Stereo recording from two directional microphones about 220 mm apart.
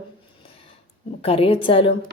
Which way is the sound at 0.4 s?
25° left (ahead or behind).